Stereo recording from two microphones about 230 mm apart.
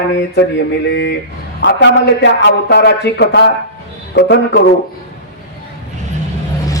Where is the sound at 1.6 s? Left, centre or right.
Left.